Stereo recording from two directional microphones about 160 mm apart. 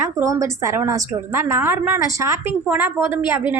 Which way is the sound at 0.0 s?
20° right (ahead or behind).